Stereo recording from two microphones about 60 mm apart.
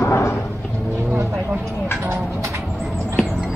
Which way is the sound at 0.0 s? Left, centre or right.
Left.